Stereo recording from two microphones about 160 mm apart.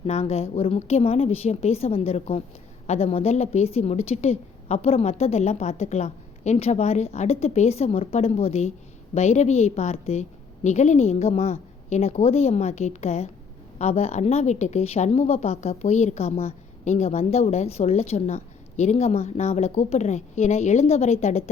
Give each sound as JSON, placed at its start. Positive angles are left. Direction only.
{"t": 0.0, "sound": "a woman's voice", "side_deg": 40}